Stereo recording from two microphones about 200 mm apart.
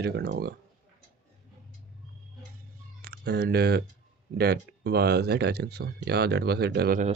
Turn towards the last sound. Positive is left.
turn(degrees=-45)  # may be behind; listen again after turning